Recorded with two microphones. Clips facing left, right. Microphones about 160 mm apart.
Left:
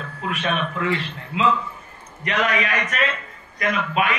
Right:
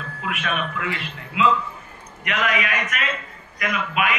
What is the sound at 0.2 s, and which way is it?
A man's voice, 35° left (ahead or behind).